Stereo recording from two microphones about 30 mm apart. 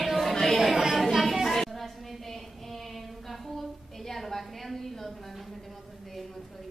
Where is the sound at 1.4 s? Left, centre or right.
Centre.